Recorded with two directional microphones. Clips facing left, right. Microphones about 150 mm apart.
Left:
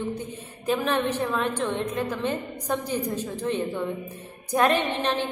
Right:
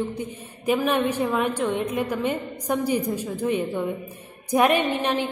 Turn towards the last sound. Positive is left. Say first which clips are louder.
# right 2 dB
turn(degrees=-10)  # may be behind; listen again after turning